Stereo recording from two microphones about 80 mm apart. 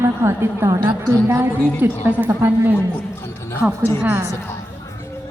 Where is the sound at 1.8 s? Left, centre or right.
Right.